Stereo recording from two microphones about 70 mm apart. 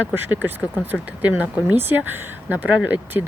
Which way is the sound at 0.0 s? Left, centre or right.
Right.